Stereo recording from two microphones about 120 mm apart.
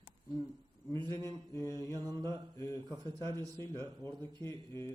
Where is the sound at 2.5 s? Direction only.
20° left (ahead or behind).